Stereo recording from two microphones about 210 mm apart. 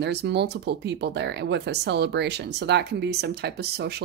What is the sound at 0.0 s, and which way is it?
Speech, 55° right (ahead or behind).